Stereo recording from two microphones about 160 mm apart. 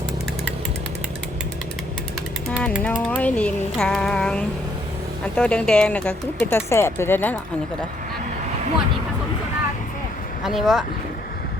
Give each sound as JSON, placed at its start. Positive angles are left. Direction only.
{"t": 2.5, "sound": "speech", "side_deg": 5}
{"t": 10.4, "sound": "speech", "side_deg": 0}